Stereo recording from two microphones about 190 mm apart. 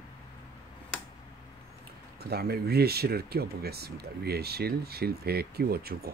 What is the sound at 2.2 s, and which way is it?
Speech, 55° right (ahead or behind).